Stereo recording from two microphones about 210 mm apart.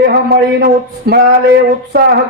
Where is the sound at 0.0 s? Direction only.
50° right (ahead or behind).